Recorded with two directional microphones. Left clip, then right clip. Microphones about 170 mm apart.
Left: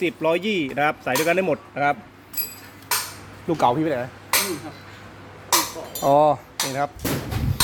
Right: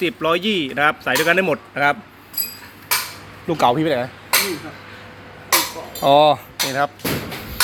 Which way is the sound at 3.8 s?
20° right (ahead or behind).